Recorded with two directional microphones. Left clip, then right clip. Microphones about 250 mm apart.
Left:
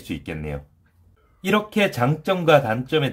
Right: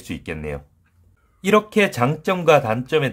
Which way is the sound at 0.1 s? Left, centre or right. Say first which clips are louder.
Right 2 dB; right.